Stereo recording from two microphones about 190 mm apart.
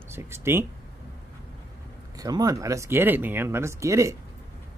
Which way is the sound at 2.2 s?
20° right (ahead or behind).